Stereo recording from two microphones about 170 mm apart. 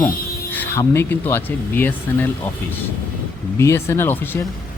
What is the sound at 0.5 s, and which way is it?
Speech, 10° left (ahead or behind).